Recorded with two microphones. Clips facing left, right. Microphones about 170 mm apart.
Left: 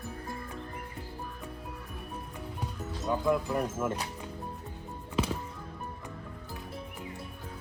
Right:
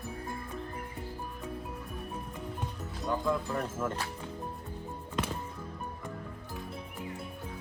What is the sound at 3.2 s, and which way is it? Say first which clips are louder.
Speech: left 6 dB; 15° left (ahead or behind).